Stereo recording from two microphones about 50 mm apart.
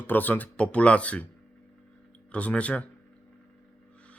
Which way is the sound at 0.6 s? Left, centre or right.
Left.